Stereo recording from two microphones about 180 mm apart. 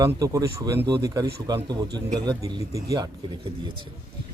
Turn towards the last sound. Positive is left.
turn(degrees=-20)  # may be behind; listen again after turning